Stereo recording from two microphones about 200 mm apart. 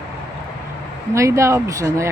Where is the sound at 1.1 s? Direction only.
15° right (ahead or behind).